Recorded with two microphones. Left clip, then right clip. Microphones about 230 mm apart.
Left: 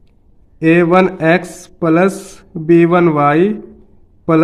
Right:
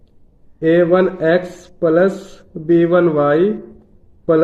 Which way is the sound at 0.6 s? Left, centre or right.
Left.